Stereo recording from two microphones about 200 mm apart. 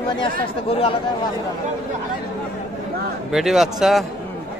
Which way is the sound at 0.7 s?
30° left (ahead or behind).